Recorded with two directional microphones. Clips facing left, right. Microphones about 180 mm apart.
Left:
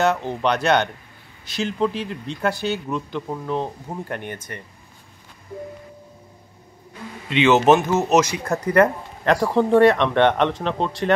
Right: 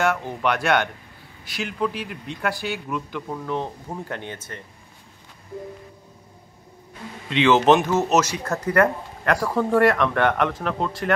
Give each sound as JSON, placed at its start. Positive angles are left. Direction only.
{"t": 0.0, "sound": "speech", "side_deg": 25}
{"t": 7.2, "sound": "speech", "side_deg": 5}
{"t": 9.2, "sound": "speech", "side_deg": 25}